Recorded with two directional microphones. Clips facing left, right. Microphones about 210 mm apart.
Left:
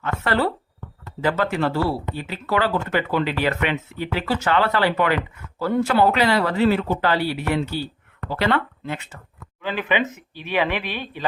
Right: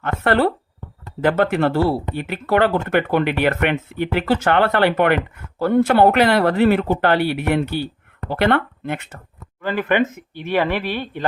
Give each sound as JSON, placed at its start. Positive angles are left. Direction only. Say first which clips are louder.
{"t": 0.0, "sound": "speech", "louder": "right 4 dB", "side_deg": -55}
{"t": 10.5, "sound": "speech", "louder": "right 3 dB", "side_deg": 15}